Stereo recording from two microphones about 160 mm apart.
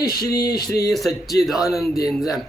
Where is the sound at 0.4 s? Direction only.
25° left (ahead or behind).